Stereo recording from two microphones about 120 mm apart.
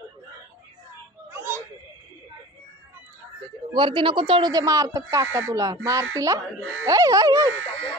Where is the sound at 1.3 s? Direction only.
20° right (ahead or behind).